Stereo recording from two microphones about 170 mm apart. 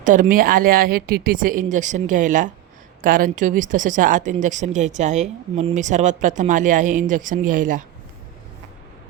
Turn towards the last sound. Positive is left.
turn(degrees=-50)  # may be behind; listen again after turning